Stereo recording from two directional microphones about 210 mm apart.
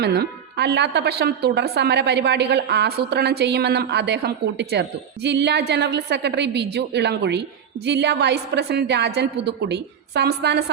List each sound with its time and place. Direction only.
0.0 s a woman's voice: 50° right (ahead or behind)